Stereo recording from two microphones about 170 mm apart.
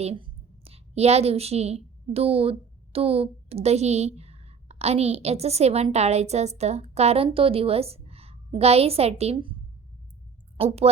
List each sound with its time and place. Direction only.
0.0 s a woman's voice: 35° right (ahead or behind)
10.6 s a woman's voice: 35° right (ahead or behind)